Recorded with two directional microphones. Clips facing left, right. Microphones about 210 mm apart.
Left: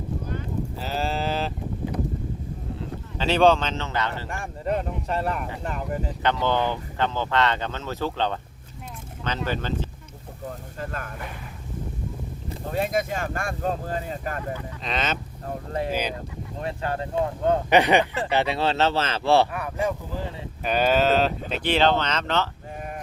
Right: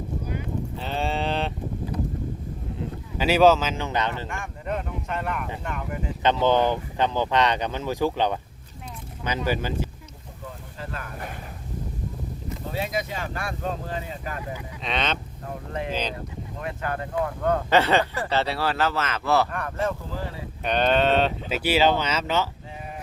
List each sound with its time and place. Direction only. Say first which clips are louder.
0.8 s sheep: right 1 dB; 5° left (ahead or behind)
3.2 s speech: right 1 dB; 10° right (ahead or behind)
4.3 s speech: left 3 dB; 35° left (ahead or behind)
6.2 s speech: right 4 dB; 20° right (ahead or behind)
10.8 s a sound: left 2 dB; 50° left (ahead or behind)
12.7 s speech: left 4 dB; 50° left (ahead or behind)
14.8 s speech: right 2 dB; centre (ahead or behind)
16.6 s speech: left 2 dB; 30° left (ahead or behind)
19.5 s speech: left 1 dB; 10° left (ahead or behind); by 22.4 s 10° right (ahead or behind)